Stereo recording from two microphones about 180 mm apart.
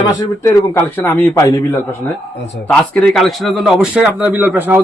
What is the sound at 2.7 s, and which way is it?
A man's voice, 5° left (ahead or behind).